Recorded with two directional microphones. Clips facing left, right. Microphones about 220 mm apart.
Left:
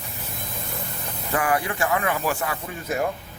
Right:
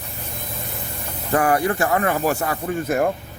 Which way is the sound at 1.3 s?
45° right (ahead or behind).